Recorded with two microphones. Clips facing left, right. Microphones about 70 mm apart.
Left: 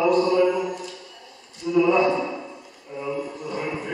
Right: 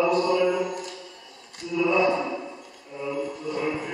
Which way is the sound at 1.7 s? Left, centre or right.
Left.